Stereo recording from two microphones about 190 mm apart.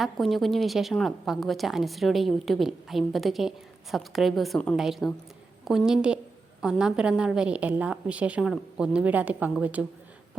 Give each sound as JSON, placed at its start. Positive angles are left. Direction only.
{"t": 0.0, "sound": "a woman's voice", "side_deg": 0}